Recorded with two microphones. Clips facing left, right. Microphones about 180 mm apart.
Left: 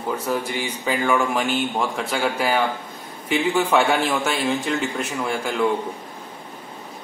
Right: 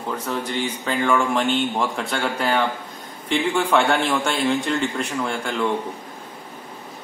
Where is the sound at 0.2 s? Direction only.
10° left (ahead or behind).